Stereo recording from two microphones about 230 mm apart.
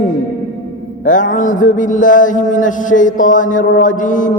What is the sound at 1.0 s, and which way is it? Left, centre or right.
Mantra, left.